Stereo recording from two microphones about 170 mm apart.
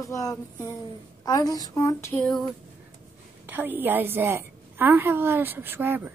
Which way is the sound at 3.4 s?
10° right (ahead or behind).